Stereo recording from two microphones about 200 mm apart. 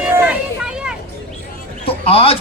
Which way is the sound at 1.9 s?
30° left (ahead or behind).